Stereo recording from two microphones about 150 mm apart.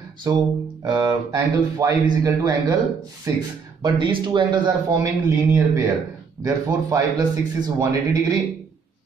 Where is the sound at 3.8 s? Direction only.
35° right (ahead or behind).